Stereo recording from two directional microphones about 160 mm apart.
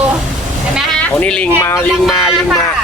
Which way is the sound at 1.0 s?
5° left (ahead or behind).